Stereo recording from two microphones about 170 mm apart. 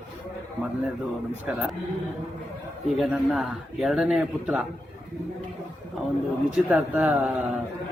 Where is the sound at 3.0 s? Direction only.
Centre (ahead or behind).